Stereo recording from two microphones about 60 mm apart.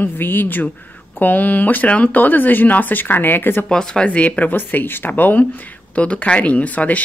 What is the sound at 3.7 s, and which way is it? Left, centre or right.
Speech, centre.